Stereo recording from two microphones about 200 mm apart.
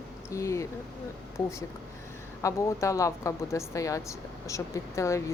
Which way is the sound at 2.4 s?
15° left (ahead or behind).